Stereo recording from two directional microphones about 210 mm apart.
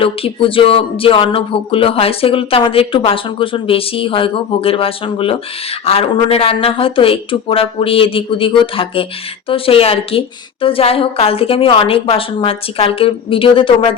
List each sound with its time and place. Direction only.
0.0 s speech: 25° left (ahead or behind)